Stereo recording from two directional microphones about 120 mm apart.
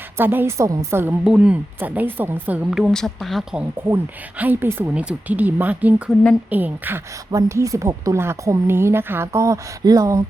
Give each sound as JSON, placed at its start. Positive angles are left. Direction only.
{"t": 0.2, "sound": "a woman's voice", "side_deg": -20}
{"t": 1.2, "sound": "speech", "side_deg": -10}
{"t": 2.6, "sound": "speech", "side_deg": -5}
{"t": 3.8, "sound": "speech", "side_deg": -20}
{"t": 7.3, "sound": "a woman's voice", "side_deg": -25}